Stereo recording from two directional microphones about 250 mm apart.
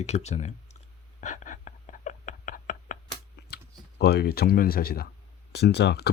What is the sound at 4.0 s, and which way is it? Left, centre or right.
Speech, left.